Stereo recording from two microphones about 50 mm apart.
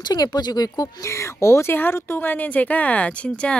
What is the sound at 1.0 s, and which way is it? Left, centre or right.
Speech, left.